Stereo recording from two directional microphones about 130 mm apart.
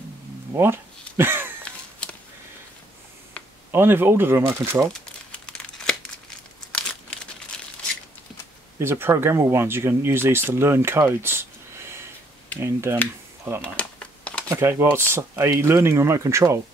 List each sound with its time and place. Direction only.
0.5 s a sound: 20° right (ahead or behind)
1.6 s a sound: 10° left (ahead or behind)
3.4 s a sound: 10° left (ahead or behind)
3.7 s speech: 15° right (ahead or behind)
5.3 s crumpling: 5° left (ahead or behind)
8.7 s speech: 20° right (ahead or behind)
12.5 s speech: 20° right (ahead or behind)
13.6 s computer keyboard: 10° left (ahead or behind)
14.5 s speech: 20° right (ahead or behind)